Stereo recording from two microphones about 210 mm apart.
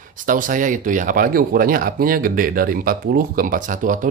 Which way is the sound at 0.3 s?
40° right (ahead or behind).